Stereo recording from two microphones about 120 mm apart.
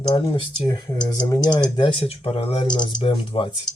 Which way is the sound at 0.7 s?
30° left (ahead or behind).